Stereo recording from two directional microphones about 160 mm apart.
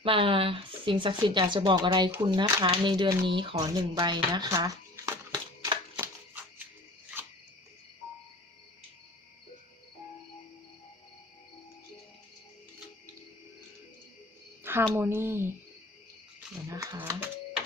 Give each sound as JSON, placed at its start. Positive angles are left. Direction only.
{"t": 0.0, "sound": "speech", "side_deg": -35}
{"t": 8.0, "sound": "cricket", "side_deg": -5}
{"t": 14.6, "sound": "cricket", "side_deg": -15}
{"t": 14.9, "sound": "a woman's voice", "side_deg": -15}
{"t": 16.6, "sound": "speech", "side_deg": -20}